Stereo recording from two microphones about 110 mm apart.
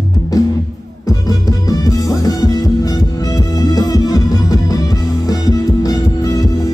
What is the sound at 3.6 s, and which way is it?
Music, 35° left (ahead or behind).